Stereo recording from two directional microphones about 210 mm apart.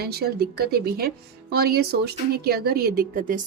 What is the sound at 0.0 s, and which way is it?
Speech, 50° right (ahead or behind).